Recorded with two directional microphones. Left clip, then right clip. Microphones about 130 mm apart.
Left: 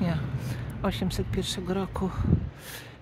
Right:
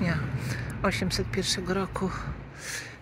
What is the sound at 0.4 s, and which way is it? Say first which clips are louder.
Speech: right 3 dB; 40° left (ahead or behind).